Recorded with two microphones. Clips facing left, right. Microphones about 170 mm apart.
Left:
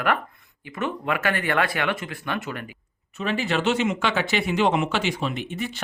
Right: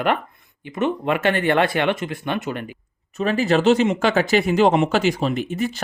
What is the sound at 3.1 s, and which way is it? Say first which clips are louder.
Speech: right 6 dB; 40° right (ahead or behind).